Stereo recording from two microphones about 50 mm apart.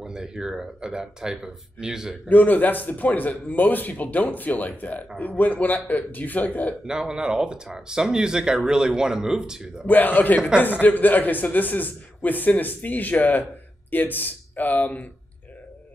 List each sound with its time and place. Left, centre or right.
0.0 s speech: centre
2.2 s a man's voice: left
6.9 s speech: centre
9.8 s a man's voice: left